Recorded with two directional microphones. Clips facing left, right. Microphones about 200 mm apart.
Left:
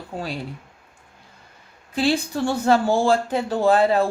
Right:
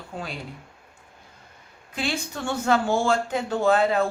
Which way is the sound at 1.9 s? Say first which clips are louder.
Left 8 dB; 30° left (ahead or behind).